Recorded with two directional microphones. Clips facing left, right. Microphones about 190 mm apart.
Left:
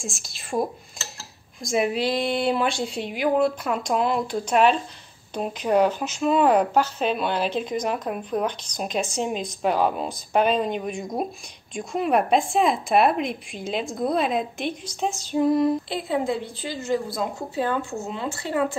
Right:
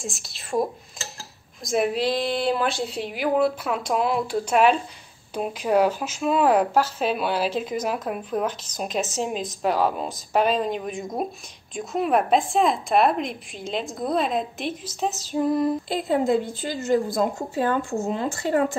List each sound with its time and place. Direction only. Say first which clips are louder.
0.0 s speech: right 1 dB; centre (ahead or behind)
16.1 s a woman's voice: right 4 dB; 45° right (ahead or behind)